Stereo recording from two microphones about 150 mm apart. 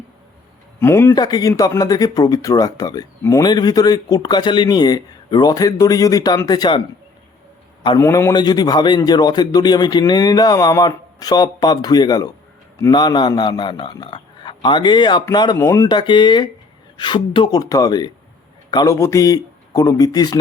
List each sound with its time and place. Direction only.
0.8 s speech: 15° left (ahead or behind)
1.1 s speech: 25° left (ahead or behind)
7.9 s speech: 20° left (ahead or behind)
15.5 s speech: 20° left (ahead or behind)
15.9 s speech: 30° left (ahead or behind)